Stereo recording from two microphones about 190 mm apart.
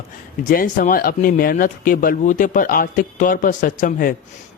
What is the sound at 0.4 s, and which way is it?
Speech, 45° left (ahead or behind).